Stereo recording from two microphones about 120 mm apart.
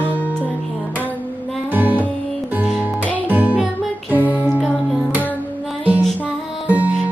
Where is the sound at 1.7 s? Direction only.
15° right (ahead or behind).